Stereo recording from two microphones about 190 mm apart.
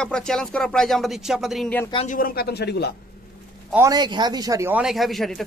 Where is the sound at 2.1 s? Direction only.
50° left (ahead or behind).